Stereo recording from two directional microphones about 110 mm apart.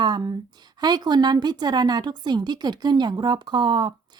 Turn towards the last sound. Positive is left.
turn(degrees=-45)  # may be behind; listen again after turning